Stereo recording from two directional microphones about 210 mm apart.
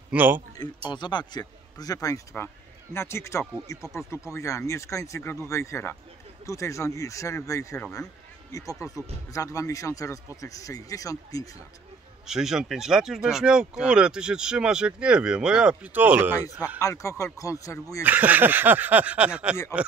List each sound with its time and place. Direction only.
0.1 s speech: 10° right (ahead or behind)
0.8 s a man's voice: 20° left (ahead or behind)
12.3 s speech: centre (ahead or behind)
16.8 s a man's voice: 15° left (ahead or behind)
18.0 s speech: 10° right (ahead or behind)